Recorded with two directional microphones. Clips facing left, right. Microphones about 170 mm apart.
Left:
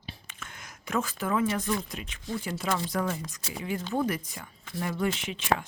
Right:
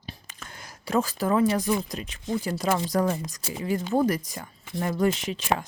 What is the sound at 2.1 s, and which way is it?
Speech, 40° right (ahead or behind).